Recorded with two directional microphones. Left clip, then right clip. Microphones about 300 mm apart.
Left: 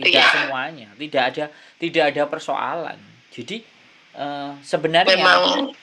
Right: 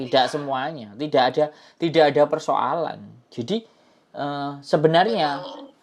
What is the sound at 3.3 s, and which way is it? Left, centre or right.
Speech, right.